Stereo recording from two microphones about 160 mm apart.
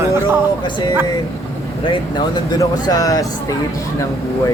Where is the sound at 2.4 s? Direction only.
20° left (ahead or behind).